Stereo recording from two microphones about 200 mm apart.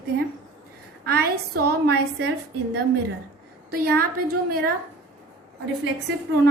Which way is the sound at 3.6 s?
50° right (ahead or behind).